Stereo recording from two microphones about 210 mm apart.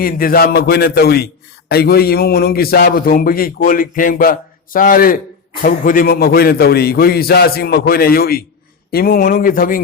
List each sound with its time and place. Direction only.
0.0 s a man's voice: 45° left (ahead or behind)